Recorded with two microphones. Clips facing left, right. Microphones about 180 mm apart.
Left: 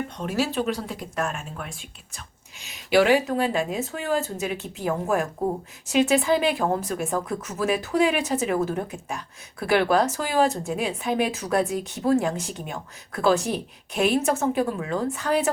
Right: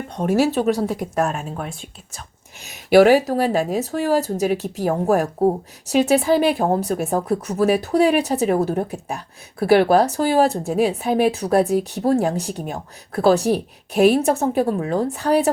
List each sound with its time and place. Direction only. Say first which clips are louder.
0.2 s speech: right 9 dB; 45° right (ahead or behind)
2.9 s speech: right 6 dB; 40° right (ahead or behind)